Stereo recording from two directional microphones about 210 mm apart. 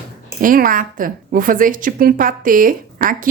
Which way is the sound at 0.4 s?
40° right (ahead or behind).